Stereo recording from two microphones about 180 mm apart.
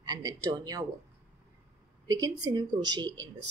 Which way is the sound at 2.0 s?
20° right (ahead or behind).